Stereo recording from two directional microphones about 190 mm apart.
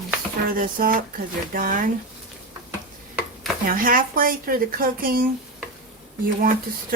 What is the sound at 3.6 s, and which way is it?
Speech, 45° right (ahead or behind).